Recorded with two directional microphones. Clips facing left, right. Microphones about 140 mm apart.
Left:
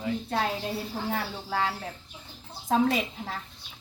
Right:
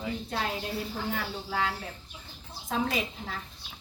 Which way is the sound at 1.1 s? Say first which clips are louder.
Left 4 dB; 40° left (ahead or behind).